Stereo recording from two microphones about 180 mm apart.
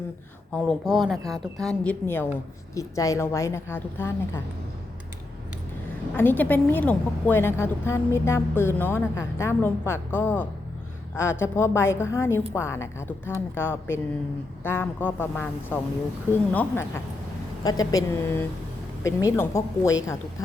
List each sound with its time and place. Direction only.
0.5 s a woman's voice: centre (ahead or behind)
6.1 s a woman's voice: 10° left (ahead or behind)